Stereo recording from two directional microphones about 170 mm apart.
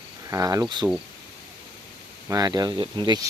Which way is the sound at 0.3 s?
20° right (ahead or behind).